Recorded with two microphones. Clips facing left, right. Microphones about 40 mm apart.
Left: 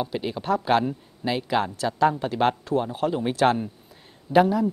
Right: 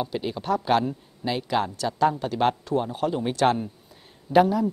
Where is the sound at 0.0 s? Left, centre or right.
Centre.